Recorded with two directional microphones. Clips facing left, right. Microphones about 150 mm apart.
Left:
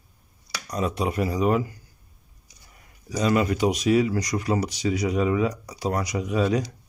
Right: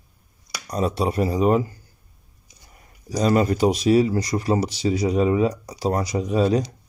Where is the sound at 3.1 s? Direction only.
35° right (ahead or behind).